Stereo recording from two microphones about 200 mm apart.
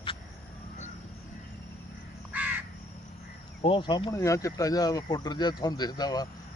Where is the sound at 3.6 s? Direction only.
25° left (ahead or behind).